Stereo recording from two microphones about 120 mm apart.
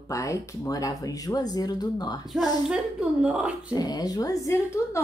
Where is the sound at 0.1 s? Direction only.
25° left (ahead or behind).